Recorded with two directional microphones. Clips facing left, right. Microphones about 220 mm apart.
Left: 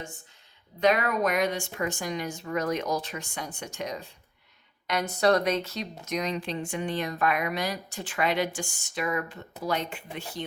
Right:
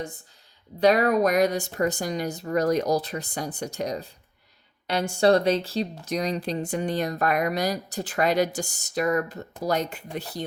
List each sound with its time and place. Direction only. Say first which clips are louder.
0.8 s speech: right 5 dB; 35° right (ahead or behind)